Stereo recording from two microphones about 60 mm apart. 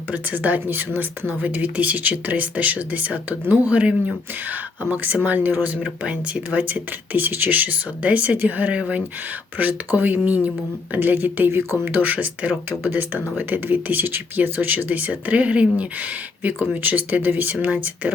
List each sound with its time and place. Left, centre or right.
0.1 s speech: right
5.8 s speech: centre